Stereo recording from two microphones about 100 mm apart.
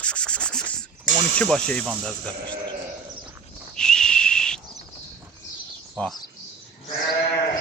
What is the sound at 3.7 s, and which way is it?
Whistle, 5° left (ahead or behind).